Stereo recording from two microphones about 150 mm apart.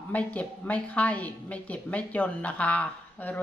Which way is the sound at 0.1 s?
10° left (ahead or behind).